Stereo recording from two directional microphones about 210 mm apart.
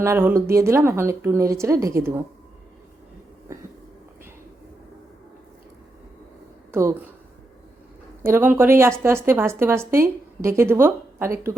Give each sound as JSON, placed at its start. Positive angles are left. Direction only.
{"t": 0.0, "sound": "a woman's voice", "side_deg": -10}
{"t": 6.7, "sound": "speech", "side_deg": -15}
{"t": 8.2, "sound": "a woman's voice", "side_deg": -10}